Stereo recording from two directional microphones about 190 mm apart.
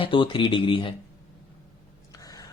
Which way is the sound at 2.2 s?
20° left (ahead or behind).